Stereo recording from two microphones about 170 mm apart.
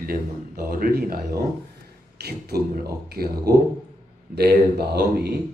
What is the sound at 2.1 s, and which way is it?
Speech, 70° right (ahead or behind).